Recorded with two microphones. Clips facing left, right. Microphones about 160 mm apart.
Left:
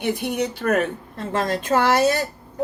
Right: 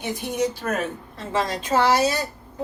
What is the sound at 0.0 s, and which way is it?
Speech, 65° left (ahead or behind).